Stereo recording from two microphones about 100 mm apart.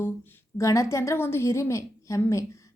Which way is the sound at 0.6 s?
30° left (ahead or behind).